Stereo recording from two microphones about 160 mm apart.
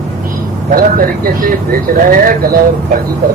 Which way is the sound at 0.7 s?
65° right (ahead or behind).